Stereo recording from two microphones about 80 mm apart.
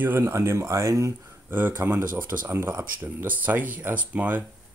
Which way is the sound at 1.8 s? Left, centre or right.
Right.